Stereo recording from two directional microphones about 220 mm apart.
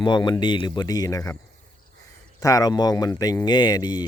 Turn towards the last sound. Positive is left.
turn(degrees=20)  # may be behind; listen again after turning